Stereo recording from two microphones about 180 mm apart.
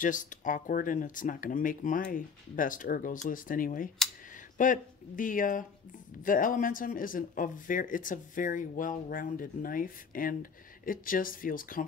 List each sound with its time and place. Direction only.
0.0 s speech: 45° left (ahead or behind)